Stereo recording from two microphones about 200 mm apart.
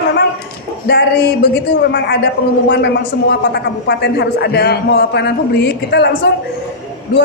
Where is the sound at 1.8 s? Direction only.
50° left (ahead or behind).